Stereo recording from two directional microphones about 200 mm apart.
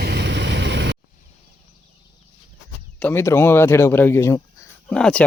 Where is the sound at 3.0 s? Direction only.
15° left (ahead or behind).